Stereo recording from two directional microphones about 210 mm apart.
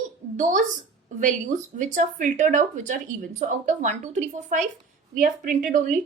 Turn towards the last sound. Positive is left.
turn(degrees=-40)  # may be behind; listen again after turning